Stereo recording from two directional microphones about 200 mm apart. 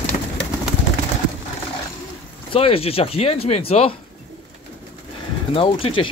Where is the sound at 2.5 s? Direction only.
30° left (ahead or behind).